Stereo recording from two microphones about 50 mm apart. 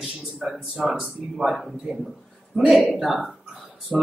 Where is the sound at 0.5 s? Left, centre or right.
Centre.